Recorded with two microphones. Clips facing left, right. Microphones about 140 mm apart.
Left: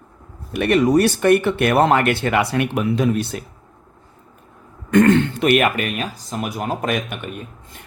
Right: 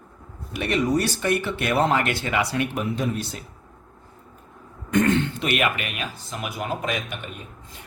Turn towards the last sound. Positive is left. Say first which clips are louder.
# left 5 dB
turn(degrees=50)  # may be behind; listen again after turning